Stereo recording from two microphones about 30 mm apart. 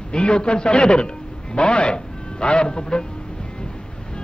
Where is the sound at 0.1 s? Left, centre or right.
Left.